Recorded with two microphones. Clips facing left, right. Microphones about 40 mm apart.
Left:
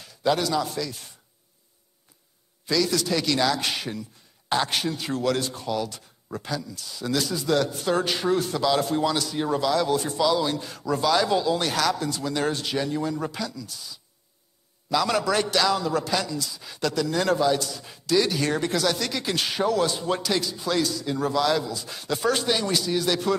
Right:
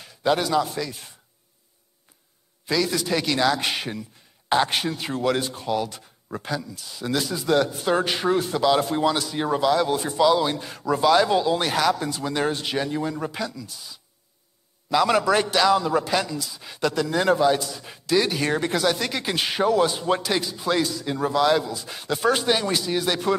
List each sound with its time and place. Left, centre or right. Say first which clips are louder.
0.0 s a man's voice: right 1 dB; centre
2.6 s a man's voice: even; centre